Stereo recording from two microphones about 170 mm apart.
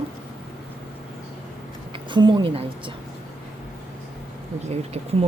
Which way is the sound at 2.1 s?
25° right (ahead or behind).